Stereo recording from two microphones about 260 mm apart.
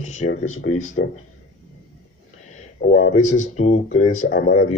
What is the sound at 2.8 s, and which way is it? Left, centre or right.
Speech, left.